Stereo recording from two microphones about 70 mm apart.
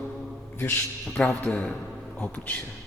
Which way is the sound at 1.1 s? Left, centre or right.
Left.